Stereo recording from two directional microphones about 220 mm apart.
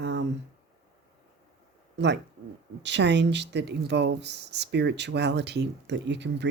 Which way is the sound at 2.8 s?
55° right (ahead or behind).